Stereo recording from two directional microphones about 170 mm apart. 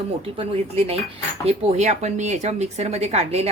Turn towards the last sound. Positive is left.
turn(degrees=-40)  # may be behind; listen again after turning